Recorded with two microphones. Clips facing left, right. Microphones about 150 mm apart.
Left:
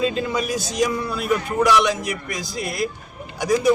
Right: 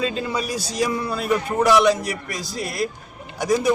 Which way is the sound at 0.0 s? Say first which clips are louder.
Left 2 dB; centre (ahead or behind).